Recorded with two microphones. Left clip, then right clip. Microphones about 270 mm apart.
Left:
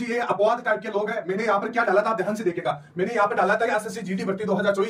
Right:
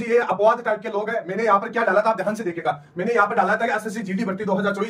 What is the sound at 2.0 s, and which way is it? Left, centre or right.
Speech, centre.